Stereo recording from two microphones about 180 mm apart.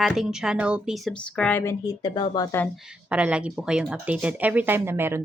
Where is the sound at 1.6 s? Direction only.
20° left (ahead or behind).